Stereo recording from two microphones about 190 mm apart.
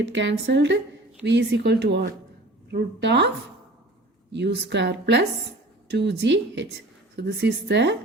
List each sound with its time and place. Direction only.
0.0 s a woman's voice: 70° right (ahead or behind)